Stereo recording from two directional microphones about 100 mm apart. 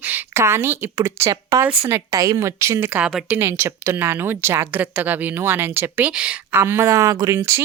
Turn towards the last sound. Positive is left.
turn(degrees=-30)  # may be behind; listen again after turning